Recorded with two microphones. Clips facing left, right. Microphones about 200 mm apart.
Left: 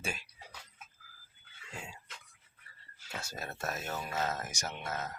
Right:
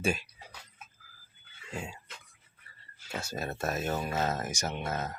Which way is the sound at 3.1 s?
25° right (ahead or behind).